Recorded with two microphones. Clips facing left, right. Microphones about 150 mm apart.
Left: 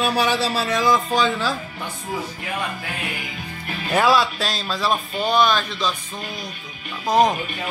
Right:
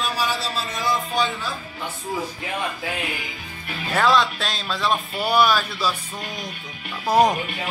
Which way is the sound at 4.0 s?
5° left (ahead or behind).